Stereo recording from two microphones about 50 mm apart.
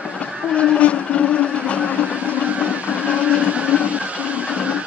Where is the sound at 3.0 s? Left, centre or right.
Right.